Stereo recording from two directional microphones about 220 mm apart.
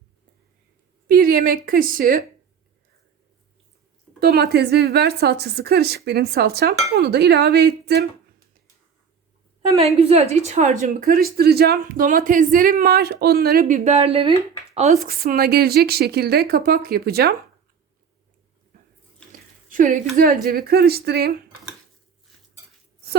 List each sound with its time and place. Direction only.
1.0 s a woman's voice: 40° right (ahead or behind)
4.2 s a woman's voice: 45° right (ahead or behind)
9.7 s a woman's voice: 25° right (ahead or behind)
14.7 s a sound: 30° right (ahead or behind)
15.0 s a woman's voice: 40° right (ahead or behind)
19.7 s a woman's voice: 35° right (ahead or behind)